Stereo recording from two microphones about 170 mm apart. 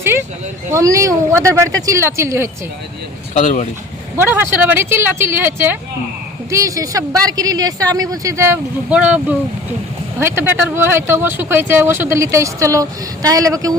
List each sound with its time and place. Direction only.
0.0 s a sound: 15° right (ahead or behind)
0.7 s speech: 20° right (ahead or behind)
3.3 s speech: 45° left (ahead or behind)
4.2 s speech: 10° right (ahead or behind)